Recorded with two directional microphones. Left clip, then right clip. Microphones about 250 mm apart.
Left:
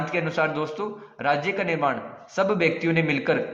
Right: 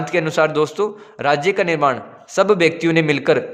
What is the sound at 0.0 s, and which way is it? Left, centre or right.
A man's voice, right.